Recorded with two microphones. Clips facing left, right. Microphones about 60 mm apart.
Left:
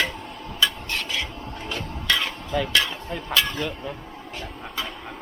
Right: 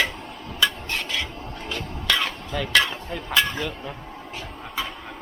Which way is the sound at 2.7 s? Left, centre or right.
Centre.